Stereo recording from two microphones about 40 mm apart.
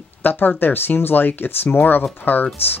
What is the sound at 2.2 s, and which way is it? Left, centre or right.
Speech, left.